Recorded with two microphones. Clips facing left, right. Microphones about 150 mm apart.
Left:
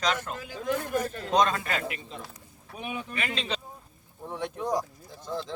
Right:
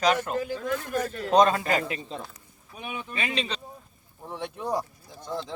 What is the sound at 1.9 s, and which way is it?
Speech, 35° right (ahead or behind).